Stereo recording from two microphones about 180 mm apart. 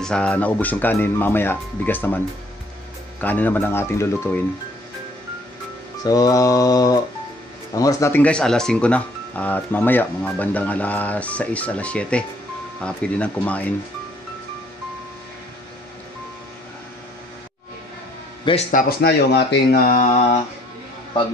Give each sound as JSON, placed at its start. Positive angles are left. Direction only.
{"t": 0.0, "sound": "speech", "side_deg": 5}
{"t": 6.0, "sound": "music", "side_deg": 20}
{"t": 7.7, "sound": "speech", "side_deg": 20}
{"t": 18.4, "sound": "a man's voice", "side_deg": 30}
{"t": 18.7, "sound": "speech", "side_deg": 55}
{"t": 19.9, "sound": "mantra", "side_deg": 40}